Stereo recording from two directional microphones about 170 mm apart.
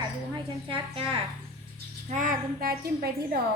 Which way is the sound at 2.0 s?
50° right (ahead or behind).